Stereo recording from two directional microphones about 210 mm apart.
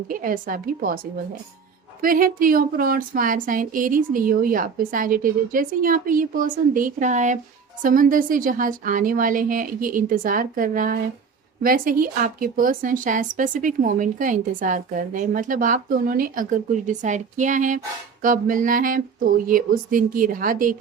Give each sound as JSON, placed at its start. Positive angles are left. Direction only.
{"t": 0.1, "sound": "a woman's voice", "side_deg": -40}
{"t": 2.0, "sound": "a woman's voice", "side_deg": -40}